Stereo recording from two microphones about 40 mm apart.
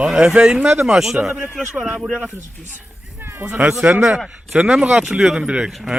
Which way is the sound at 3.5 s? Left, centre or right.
Right.